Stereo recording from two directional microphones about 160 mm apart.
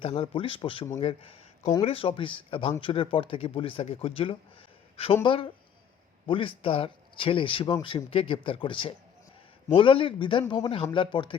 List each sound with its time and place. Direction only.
0.0 s speech: 35° left (ahead or behind)